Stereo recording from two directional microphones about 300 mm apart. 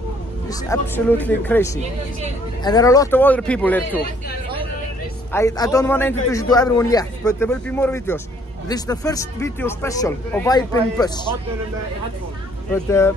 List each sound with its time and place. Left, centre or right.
0.5 s a man's voice: centre
5.3 s speech: centre
12.7 s speech: centre